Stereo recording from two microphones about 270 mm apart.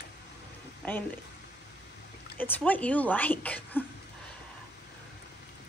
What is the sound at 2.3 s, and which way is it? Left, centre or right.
Speech, centre.